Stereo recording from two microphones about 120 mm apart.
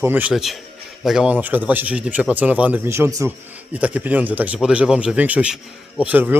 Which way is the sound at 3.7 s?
10° right (ahead or behind).